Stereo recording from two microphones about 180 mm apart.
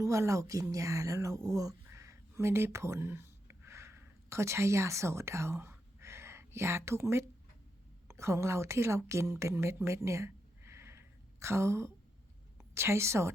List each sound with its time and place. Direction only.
0.0 s a woman's voice: 15° right (ahead or behind)